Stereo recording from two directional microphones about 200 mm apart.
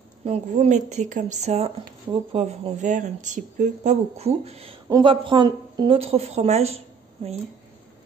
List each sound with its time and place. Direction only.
0.2 s speech: 35° right (ahead or behind)